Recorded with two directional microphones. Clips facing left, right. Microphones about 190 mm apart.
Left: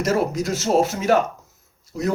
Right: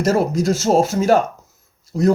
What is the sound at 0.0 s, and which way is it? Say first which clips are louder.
Speech: right 4 dB; 35° right (ahead or behind).